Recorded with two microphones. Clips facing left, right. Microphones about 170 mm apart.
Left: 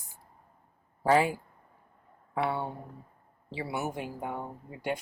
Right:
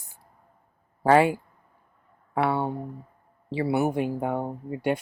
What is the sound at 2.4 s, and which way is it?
Speech, 65° right (ahead or behind).